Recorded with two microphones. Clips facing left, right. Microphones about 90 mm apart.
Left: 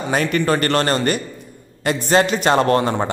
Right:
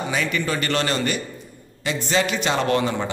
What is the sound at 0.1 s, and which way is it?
Speech, 50° left (ahead or behind).